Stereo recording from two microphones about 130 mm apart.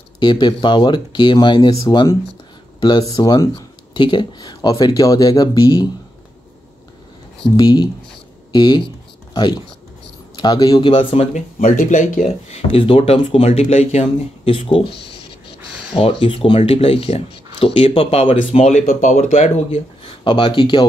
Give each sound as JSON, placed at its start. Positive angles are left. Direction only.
{"t": 0.2, "sound": "speech", "side_deg": 35}
{"t": 7.5, "sound": "speech", "side_deg": 35}
{"t": 11.3, "sound": "speech", "side_deg": 80}
{"t": 12.3, "sound": "speech", "side_deg": 55}
{"t": 18.5, "sound": "speech", "side_deg": 60}